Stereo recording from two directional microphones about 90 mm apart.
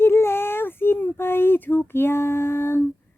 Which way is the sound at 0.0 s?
30° left (ahead or behind).